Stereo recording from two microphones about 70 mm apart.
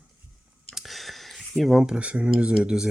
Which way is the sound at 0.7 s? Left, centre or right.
Centre.